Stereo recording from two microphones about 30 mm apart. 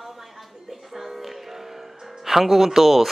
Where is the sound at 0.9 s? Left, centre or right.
Centre.